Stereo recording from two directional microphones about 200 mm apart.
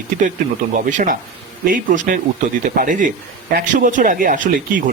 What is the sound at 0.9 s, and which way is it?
A man's voice, 40° right (ahead or behind).